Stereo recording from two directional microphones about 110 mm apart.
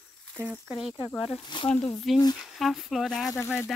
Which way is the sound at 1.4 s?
45° left (ahead or behind).